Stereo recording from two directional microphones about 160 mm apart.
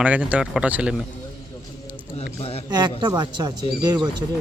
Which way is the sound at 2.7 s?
25° right (ahead or behind).